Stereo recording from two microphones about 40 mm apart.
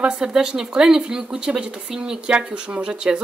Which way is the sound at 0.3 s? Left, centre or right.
Centre.